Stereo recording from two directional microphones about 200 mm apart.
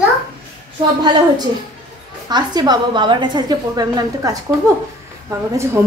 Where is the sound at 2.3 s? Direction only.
20° right (ahead or behind).